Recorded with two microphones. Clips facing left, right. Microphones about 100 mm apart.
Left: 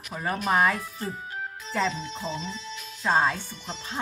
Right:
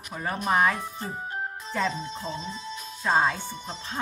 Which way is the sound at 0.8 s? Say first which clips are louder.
Right 1 dB; 40° right (ahead or behind).